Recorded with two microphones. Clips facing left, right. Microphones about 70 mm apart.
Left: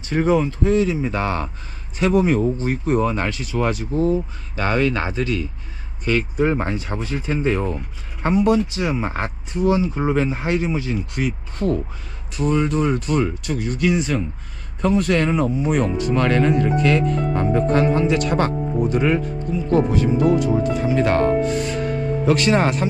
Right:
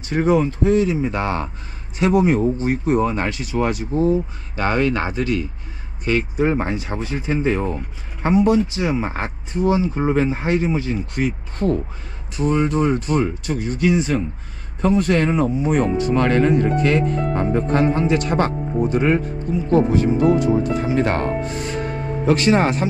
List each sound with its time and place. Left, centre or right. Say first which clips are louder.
0.1 s speech: right 1 dB; right